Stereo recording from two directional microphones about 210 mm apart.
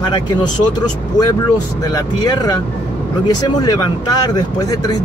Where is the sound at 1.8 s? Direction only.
15° left (ahead or behind).